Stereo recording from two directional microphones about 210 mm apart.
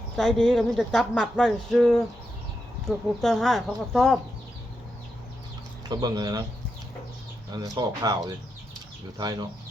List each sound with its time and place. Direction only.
0.2 s speech: centre (ahead or behind)
5.9 s speech: 20° right (ahead or behind)
7.5 s speech: 20° right (ahead or behind)